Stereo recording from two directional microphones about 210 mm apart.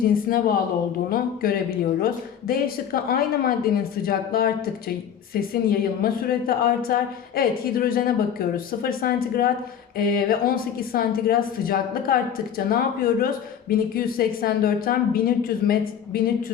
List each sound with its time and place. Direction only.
0.0 s a woman's voice: 45° left (ahead or behind)